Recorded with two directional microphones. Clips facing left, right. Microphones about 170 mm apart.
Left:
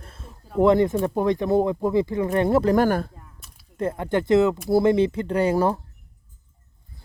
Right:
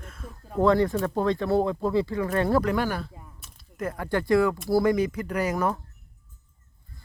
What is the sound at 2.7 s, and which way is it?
Speech, 45° left (ahead or behind).